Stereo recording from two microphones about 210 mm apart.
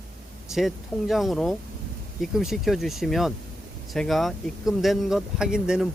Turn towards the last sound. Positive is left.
turn(degrees=-5)  # may be behind; listen again after turning